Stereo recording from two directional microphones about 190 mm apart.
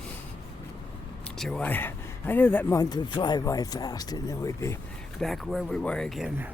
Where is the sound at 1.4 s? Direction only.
5° left (ahead or behind).